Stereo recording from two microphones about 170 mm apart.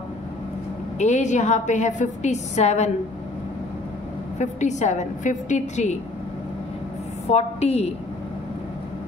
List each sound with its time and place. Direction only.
0.9 s a woman's voice: 45° left (ahead or behind)
4.4 s a woman's voice: 45° left (ahead or behind)
7.2 s a woman's voice: 40° left (ahead or behind)